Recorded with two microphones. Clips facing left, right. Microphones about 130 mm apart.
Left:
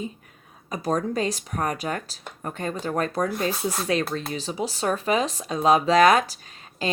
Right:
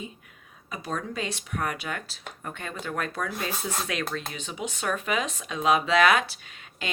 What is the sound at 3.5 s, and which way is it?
Speech, 10° left (ahead or behind).